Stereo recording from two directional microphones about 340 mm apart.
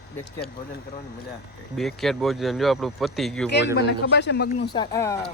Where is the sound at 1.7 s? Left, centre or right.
Centre.